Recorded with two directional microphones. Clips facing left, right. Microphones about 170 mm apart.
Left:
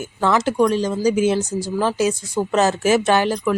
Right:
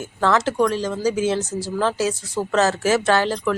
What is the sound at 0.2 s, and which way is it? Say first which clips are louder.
A woman's voice: left 1 dB; 15° left (ahead or behind).